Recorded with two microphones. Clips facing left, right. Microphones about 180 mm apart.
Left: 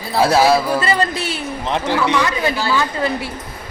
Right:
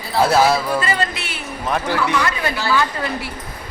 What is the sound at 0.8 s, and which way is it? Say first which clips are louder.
Speech: left 3 dB; 35° left (ahead or behind).